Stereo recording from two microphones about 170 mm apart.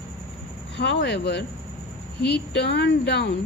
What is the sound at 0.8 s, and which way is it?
A woman's voice, 90° left.